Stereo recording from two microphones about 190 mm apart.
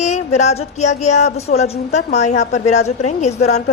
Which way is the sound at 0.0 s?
35° left (ahead or behind).